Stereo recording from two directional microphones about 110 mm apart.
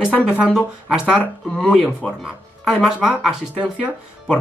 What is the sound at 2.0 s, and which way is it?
Speech, 5° left (ahead or behind).